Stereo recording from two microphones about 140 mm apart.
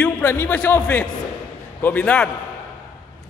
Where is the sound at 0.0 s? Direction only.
15° left (ahead or behind).